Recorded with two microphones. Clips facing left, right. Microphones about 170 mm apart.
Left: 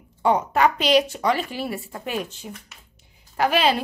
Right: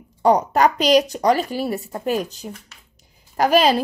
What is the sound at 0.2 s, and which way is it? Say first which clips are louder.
A woman's voice: right 3 dB; 40° right (ahead or behind).